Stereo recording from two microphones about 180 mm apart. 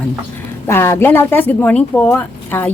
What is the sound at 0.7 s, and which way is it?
Speech, 15° left (ahead or behind).